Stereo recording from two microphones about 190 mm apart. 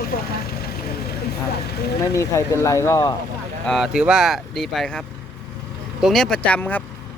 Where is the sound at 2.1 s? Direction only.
15° left (ahead or behind).